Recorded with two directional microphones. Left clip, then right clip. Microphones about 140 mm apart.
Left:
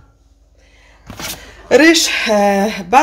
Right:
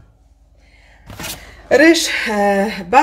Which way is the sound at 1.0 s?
Centre (ahead or behind).